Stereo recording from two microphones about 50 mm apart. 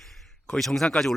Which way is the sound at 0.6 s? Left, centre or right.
Centre.